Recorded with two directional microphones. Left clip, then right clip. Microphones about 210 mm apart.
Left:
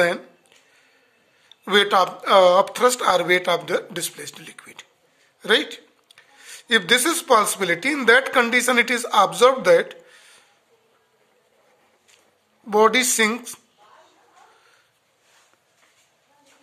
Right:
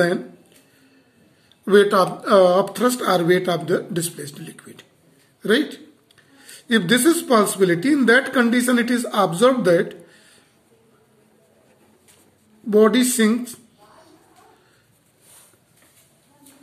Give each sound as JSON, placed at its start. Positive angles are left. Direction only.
{"t": 1.5, "sound": "a woman's voice", "side_deg": 40}
{"t": 12.6, "sound": "speech", "side_deg": 40}